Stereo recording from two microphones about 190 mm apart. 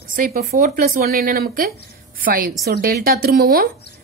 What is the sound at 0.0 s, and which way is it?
A woman's voice, 50° right (ahead or behind).